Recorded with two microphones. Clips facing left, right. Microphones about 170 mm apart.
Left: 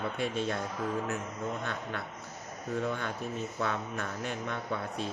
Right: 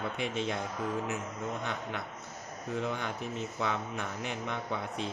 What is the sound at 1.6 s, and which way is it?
A man's voice, 15° right (ahead or behind).